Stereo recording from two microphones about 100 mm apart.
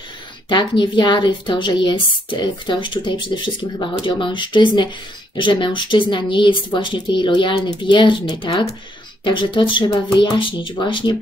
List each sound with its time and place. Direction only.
0.5 s a woman's voice: 50° left (ahead or behind)